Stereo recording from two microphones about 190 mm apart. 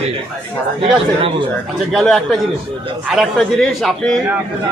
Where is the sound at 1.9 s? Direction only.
Centre (ahead or behind).